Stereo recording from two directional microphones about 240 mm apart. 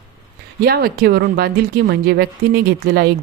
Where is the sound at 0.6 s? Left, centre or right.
Right.